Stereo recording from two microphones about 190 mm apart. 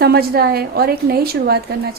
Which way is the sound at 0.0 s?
55° right (ahead or behind).